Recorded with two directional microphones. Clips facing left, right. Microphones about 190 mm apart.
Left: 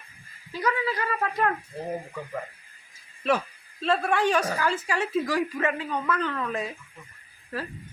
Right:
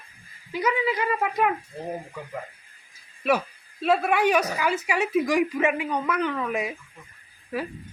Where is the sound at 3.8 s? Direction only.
10° right (ahead or behind).